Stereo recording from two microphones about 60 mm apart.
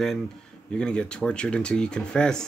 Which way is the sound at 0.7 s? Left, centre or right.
Centre.